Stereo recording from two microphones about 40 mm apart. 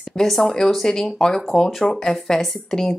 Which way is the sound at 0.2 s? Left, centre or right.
Centre.